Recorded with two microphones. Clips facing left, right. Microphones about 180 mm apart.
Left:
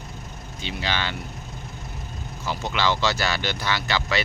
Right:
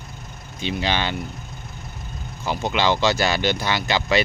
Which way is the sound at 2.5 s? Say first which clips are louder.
Right 4 dB; 20° right (ahead or behind).